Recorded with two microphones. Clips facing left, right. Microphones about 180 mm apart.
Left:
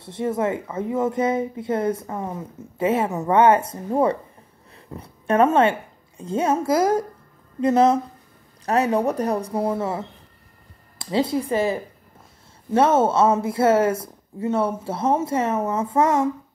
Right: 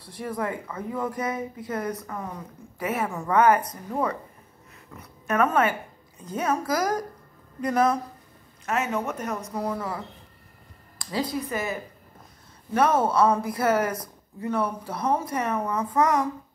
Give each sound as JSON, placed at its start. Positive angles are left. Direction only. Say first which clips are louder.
{"t": 0.0, "sound": "a woman's voice", "louder": "left 7 dB", "side_deg": 25}
{"t": 8.6, "sound": "a woman's voice", "louder": "left 7 dB", "side_deg": 35}